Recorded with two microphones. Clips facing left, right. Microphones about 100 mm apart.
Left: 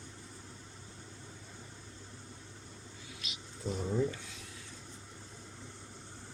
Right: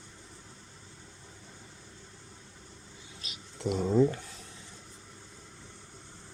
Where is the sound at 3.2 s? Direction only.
35° right (ahead or behind).